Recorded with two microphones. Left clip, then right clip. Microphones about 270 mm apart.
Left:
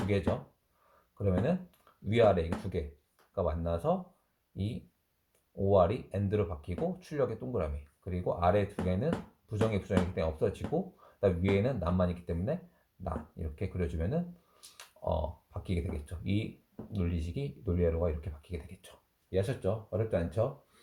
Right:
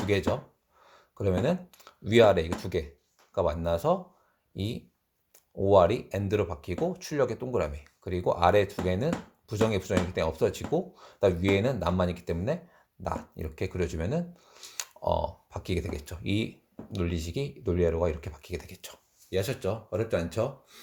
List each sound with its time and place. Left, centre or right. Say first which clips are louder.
0.1 s speech: right 5 dB; right